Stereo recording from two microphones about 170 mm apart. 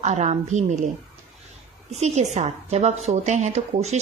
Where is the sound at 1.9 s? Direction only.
40° right (ahead or behind).